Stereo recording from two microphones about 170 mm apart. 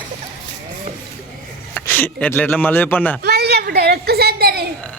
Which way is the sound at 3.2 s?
70° right (ahead or behind).